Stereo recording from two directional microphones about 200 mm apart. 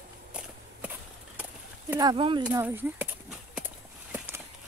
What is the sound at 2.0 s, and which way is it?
Speech, 25° right (ahead or behind).